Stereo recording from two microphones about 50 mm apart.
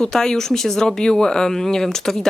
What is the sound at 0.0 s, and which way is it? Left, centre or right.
Speech, centre.